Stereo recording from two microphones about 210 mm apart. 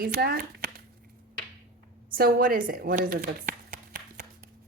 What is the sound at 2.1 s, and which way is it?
Speech, 45° right (ahead or behind).